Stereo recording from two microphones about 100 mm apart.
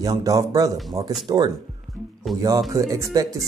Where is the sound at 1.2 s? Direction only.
45° right (ahead or behind).